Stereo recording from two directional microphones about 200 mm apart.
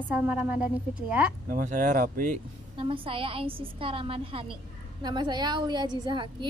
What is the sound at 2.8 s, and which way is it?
Speech, 25° right (ahead or behind).